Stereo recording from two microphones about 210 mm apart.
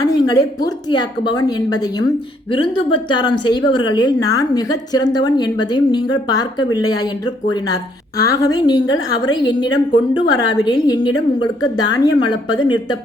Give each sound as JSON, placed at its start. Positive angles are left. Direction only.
{"t": 0.1, "sound": "speech", "side_deg": 20}